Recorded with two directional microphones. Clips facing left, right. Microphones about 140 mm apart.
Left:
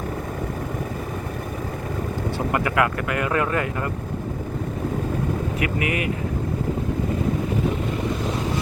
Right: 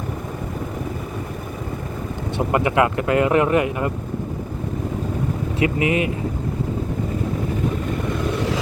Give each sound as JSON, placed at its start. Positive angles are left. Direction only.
{"t": 2.5, "sound": "speech", "side_deg": -20}
{"t": 5.5, "sound": "speech", "side_deg": -25}